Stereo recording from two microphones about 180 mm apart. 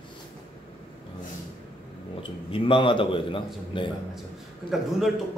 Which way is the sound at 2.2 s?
30° left (ahead or behind).